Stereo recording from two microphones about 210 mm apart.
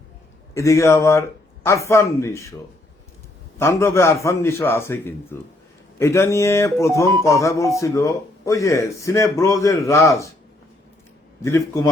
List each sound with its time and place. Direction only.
0.5 s music: 15° left (ahead or behind)
3.6 s music: 15° left (ahead or behind)
11.4 s music: 15° left (ahead or behind)